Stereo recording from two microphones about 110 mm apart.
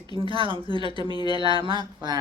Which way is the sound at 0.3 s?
50° right (ahead or behind).